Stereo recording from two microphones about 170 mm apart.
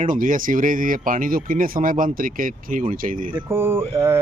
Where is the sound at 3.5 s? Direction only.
15° right (ahead or behind).